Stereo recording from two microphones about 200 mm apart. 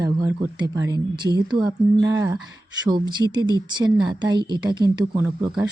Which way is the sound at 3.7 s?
20° right (ahead or behind).